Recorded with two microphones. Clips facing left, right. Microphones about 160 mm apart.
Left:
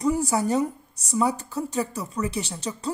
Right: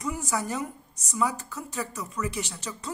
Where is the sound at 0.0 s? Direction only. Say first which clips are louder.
Left 8 dB; 35° left (ahead or behind).